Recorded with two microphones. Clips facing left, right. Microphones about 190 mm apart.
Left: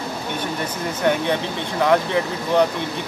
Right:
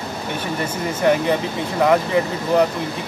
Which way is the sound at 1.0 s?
Centre (ahead or behind).